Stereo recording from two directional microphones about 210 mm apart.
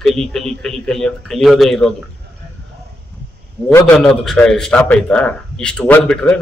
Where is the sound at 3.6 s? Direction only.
15° left (ahead or behind).